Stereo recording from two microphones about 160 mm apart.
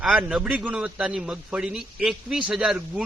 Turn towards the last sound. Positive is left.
turn(degrees=-5)  # may be behind; listen again after turning